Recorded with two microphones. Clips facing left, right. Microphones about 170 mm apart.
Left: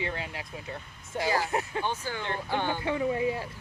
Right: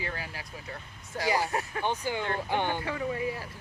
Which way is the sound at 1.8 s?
15° right (ahead or behind).